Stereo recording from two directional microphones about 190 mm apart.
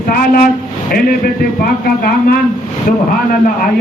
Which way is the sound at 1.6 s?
50° left (ahead or behind).